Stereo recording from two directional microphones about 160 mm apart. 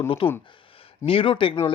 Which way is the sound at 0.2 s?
30° left (ahead or behind).